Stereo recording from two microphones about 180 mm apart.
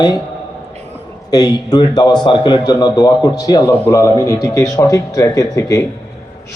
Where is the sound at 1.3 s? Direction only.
20° left (ahead or behind).